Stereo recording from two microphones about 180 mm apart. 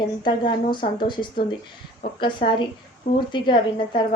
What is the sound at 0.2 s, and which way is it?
A woman's voice, 25° left (ahead or behind).